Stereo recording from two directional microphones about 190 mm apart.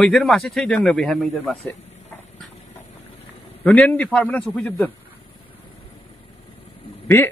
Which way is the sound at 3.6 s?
10° left (ahead or behind).